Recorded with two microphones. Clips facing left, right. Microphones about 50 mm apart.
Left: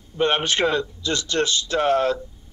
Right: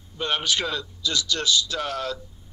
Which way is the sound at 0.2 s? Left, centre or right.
Left.